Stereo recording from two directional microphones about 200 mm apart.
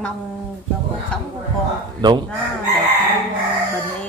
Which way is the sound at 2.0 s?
20° right (ahead or behind).